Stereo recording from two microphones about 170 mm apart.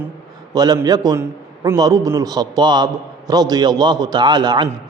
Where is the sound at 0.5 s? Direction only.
25° right (ahead or behind).